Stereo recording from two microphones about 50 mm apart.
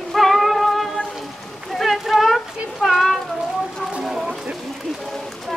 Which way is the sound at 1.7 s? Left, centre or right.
Centre.